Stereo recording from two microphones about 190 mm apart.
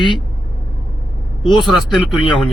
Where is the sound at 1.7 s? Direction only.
Centre (ahead or behind).